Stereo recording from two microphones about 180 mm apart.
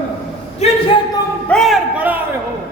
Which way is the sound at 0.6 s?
35° left (ahead or behind).